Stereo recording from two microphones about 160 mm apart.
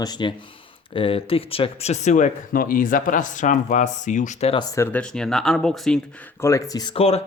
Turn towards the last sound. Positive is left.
turn(degrees=40)  # may be behind; listen again after turning